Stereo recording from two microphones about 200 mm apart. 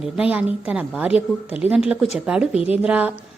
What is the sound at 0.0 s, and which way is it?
A woman's voice, 5° right (ahead or behind).